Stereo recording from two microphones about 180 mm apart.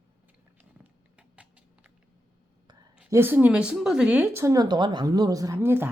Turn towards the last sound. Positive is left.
turn(degrees=-15)  # may be behind; listen again after turning